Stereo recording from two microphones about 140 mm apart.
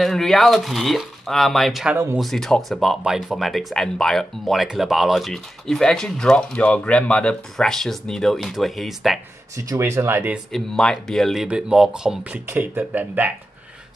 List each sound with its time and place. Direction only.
0.0 s speech: centre (ahead or behind)
9.6 s speech: 20° right (ahead or behind)
10.5 s speech: 5° left (ahead or behind); by 13.3 s 10° right (ahead or behind)